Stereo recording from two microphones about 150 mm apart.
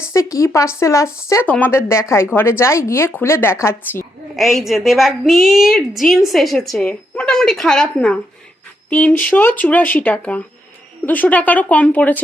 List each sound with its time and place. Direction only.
0.1 s speech: 20° left (ahead or behind)
4.4 s a woman's voice: centre (ahead or behind)